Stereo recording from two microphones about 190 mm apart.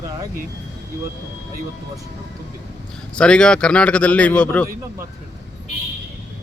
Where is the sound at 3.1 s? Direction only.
5° left (ahead or behind).